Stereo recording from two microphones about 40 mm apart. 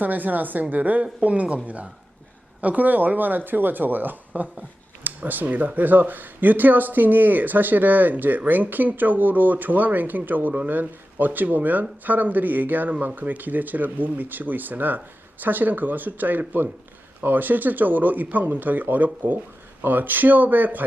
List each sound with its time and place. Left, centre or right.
0.0 s speech: right